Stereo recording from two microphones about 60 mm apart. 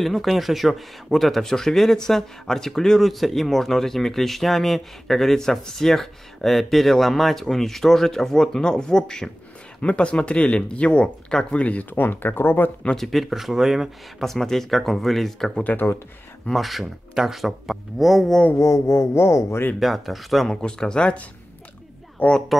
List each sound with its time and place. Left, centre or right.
0.0 s speech: centre; by 12.7 s left
12.9 s speech: centre
15.6 s speech: left
16.4 s speech: centre
18.6 s speech: left
19.8 s speech: centre
20.6 s speech: centre
22.2 s speech: left